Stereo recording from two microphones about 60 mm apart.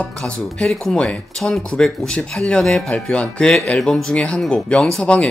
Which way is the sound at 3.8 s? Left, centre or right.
Centre.